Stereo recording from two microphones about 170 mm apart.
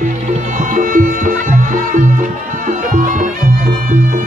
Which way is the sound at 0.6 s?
50° right (ahead or behind).